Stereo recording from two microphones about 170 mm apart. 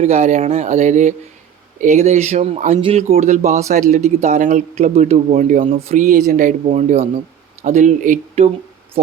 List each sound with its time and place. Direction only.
0.0 s speech: 40° right (ahead or behind)